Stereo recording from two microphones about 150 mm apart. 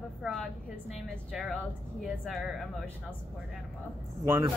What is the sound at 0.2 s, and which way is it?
Speech, centre (ahead or behind).